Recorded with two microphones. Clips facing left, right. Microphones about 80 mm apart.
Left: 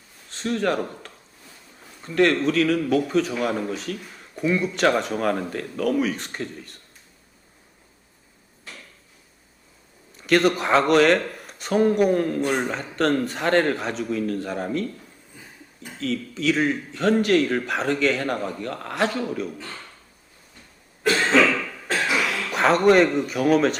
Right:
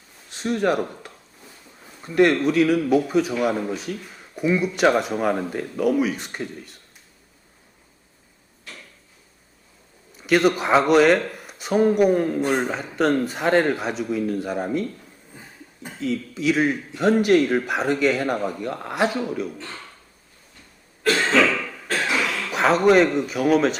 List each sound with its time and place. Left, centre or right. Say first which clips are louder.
0.3 s a man's voice: right 2 dB; centre
10.2 s a man's voice: right 1 dB; centre
15.3 s a sound: right 2 dB; right
16.0 s a man's voice: right 1 dB; centre
21.2 s cough: left 1 dB; centre
22.0 s a man's voice: even; centre